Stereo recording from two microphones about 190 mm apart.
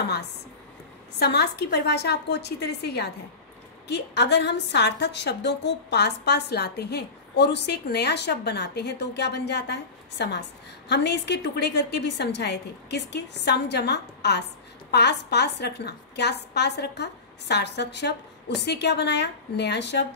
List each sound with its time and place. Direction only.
1.2 s a woman's voice: 60° left (ahead or behind)